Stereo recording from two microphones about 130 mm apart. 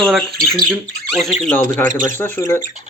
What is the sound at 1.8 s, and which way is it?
Speech, 15° left (ahead or behind).